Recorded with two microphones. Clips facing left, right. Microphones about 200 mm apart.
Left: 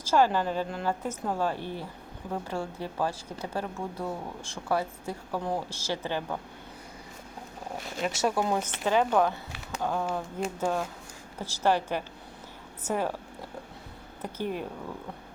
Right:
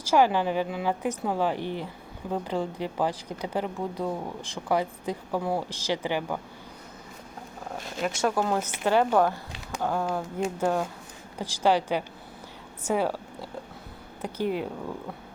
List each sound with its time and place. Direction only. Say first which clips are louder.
0.0 s speech: right 2 dB; 10° right (ahead or behind)
8.0 s speech: right 1 dB; 5° left (ahead or behind)
8.9 s speech: right 2 dB; 10° right (ahead or behind)
14.2 s speech: right 4 dB; 10° right (ahead or behind)